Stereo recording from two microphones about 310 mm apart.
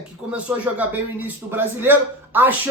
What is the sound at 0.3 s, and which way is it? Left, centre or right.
Speech, centre.